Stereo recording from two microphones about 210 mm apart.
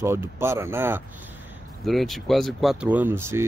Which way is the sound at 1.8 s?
Centre (ahead or behind).